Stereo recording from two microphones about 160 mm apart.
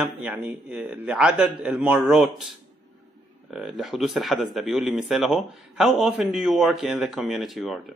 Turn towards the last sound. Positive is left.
turn(degrees=0)  # may be behind; listen again after turning